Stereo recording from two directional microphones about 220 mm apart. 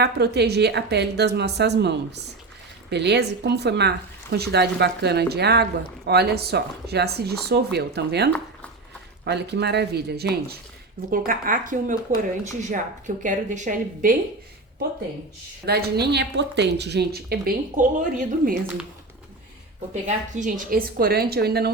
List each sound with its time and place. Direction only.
0.0 s a woman's voice: 50° right (ahead or behind)
15.6 s speech: 45° right (ahead or behind)
19.9 s speech: 35° right (ahead or behind)